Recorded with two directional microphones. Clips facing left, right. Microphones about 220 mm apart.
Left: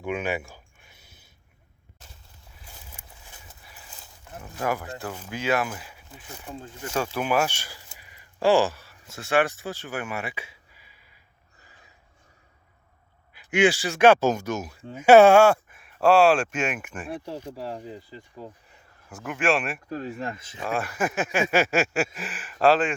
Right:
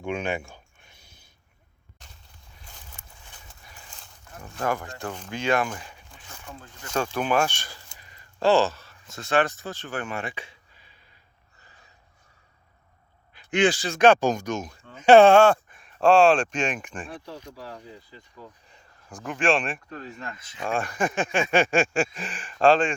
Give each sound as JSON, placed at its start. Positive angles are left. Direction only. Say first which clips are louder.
{"t": 0.0, "sound": "a sound", "louder": "even", "side_deg": 5}
{"t": 2.6, "sound": "a sound", "louder": "left 1 dB", "side_deg": 5}
{"t": 3.6, "sound": "speech", "louder": "even", "side_deg": 5}
{"t": 6.9, "sound": "speech", "louder": "right 1 dB", "side_deg": 5}
{"t": 13.3, "sound": "speech", "louder": "left 1 dB", "side_deg": 10}
{"t": 18.7, "sound": "speech", "louder": "even", "side_deg": 5}
{"t": 20.2, "sound": "speech", "louder": "left 6 dB", "side_deg": 25}
{"t": 20.7, "sound": "speech", "louder": "right 1 dB", "side_deg": 5}